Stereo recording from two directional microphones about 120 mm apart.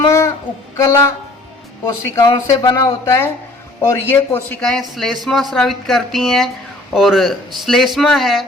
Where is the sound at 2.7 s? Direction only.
20° left (ahead or behind).